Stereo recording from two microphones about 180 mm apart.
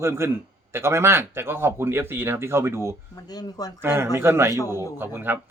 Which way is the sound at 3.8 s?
15° right (ahead or behind).